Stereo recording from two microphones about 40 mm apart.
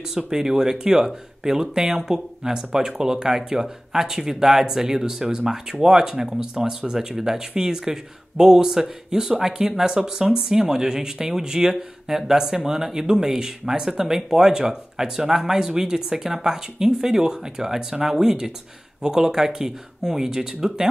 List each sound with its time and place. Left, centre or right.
0.3 s speech: centre